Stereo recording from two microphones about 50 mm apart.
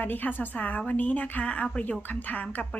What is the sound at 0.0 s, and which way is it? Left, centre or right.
A woman's voice, left.